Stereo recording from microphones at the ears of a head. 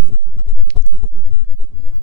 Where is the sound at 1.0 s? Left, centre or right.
Left.